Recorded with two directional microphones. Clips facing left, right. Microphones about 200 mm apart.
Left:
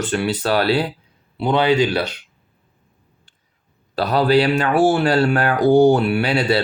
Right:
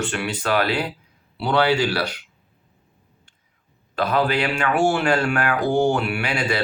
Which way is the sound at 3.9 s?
35° left (ahead or behind).